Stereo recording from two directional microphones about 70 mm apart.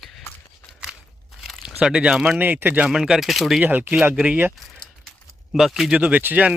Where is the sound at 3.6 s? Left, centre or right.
Right.